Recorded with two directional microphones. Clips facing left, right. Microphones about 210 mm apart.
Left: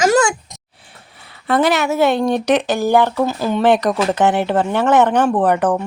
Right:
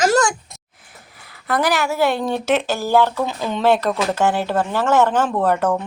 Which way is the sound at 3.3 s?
5° left (ahead or behind).